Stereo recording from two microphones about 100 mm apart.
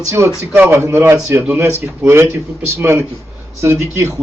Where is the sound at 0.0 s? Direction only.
30° right (ahead or behind).